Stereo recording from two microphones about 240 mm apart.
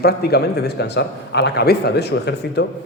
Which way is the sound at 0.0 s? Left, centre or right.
Left.